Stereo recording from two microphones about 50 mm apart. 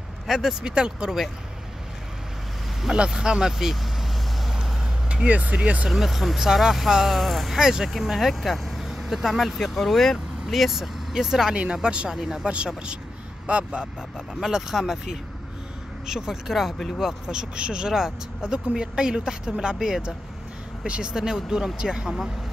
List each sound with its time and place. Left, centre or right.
0.3 s speech: centre
3.1 s speech: centre
5.1 s speech: right
5.9 s speech: centre
7.6 s speech: centre
7.9 s speech: centre; by 13.8 s right
14.4 s speech: centre
16.1 s speech: centre
17.0 s speech: centre
20.8 s speech: right
21.1 s speech: centre